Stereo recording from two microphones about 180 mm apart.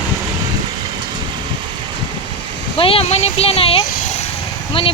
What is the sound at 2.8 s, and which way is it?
Speech, 30° left (ahead or behind).